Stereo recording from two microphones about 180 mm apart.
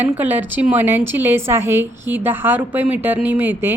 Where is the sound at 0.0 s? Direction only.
10° right (ahead or behind).